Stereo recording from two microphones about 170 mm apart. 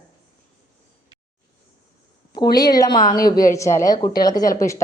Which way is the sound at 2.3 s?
25° left (ahead or behind).